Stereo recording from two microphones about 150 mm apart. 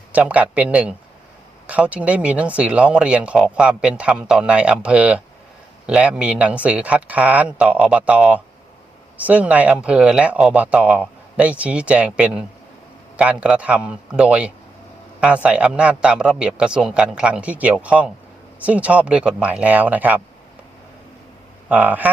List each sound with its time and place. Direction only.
0.1 s speech: 10° right (ahead or behind)
21.7 s speech: 10° right (ahead or behind)